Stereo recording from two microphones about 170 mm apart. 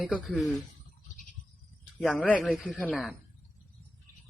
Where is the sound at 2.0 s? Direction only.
5° left (ahead or behind).